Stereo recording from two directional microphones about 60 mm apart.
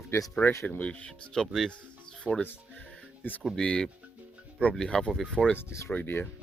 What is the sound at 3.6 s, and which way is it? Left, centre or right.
Speech, centre.